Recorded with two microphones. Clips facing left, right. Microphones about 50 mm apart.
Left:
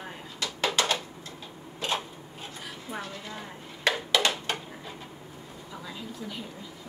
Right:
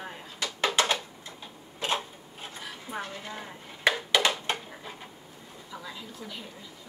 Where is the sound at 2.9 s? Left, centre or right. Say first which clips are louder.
Right 2 dB; centre.